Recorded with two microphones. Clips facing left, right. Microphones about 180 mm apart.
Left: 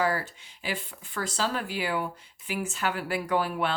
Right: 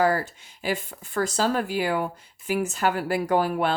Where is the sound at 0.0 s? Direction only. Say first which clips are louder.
Right 5 dB; 45° right (ahead or behind).